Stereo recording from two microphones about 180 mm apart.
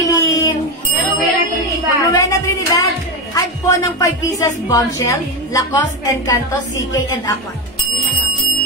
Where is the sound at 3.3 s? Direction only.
20° left (ahead or behind).